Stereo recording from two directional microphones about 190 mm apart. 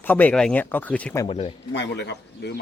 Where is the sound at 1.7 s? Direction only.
65° left (ahead or behind).